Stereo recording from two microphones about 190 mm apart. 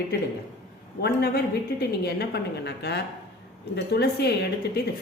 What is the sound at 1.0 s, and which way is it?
A woman's voice, 55° left (ahead or behind).